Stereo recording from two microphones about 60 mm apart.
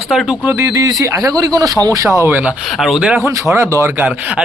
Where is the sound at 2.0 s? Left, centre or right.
Right.